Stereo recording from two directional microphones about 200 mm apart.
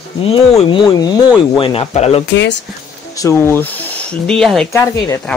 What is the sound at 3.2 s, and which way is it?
Speech, 15° left (ahead or behind).